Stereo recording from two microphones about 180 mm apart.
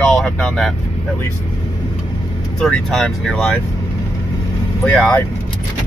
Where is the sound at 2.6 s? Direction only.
Centre (ahead or behind).